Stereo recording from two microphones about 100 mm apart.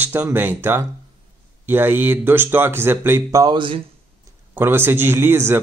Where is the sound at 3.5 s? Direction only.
60° right (ahead or behind).